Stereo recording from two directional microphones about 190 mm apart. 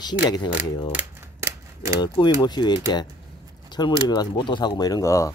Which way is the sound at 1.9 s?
25° left (ahead or behind).